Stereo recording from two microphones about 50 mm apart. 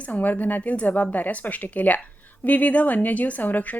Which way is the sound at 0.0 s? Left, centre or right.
Left.